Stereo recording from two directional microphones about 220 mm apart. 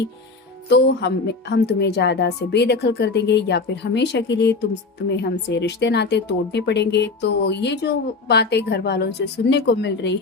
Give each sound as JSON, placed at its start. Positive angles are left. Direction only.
{"t": 0.7, "sound": "a woman's voice", "side_deg": 50}